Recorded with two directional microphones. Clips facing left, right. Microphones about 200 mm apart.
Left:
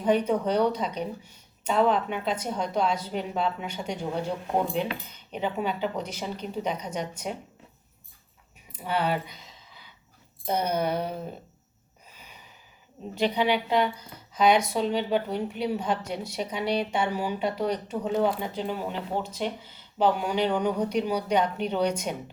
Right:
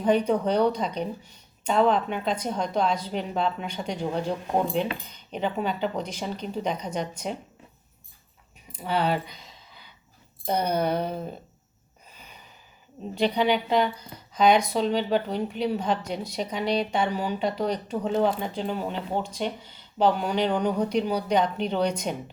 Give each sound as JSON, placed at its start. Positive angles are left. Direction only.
{"t": 0.0, "sound": "a woman's voice", "side_deg": 5}
{"t": 8.7, "sound": "speech", "side_deg": 5}
{"t": 9.3, "sound": "a sound", "side_deg": 0}
{"t": 10.4, "sound": "speech", "side_deg": 5}
{"t": 13.1, "sound": "a woman's voice", "side_deg": 5}